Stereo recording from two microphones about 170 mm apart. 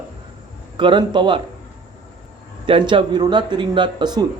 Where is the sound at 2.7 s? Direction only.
30° right (ahead or behind).